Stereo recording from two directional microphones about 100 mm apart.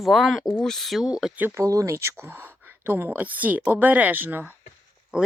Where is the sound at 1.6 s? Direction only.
35° right (ahead or behind).